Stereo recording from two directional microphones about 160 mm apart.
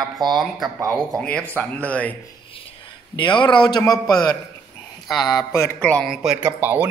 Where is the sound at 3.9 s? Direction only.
5° left (ahead or behind).